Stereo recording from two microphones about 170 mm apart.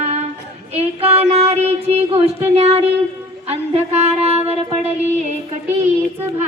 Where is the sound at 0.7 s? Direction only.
35° right (ahead or behind).